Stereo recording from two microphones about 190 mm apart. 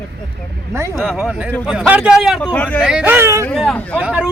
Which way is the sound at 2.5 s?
10° left (ahead or behind).